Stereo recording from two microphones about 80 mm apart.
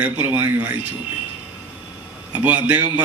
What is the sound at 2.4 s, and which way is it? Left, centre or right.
Speech, right.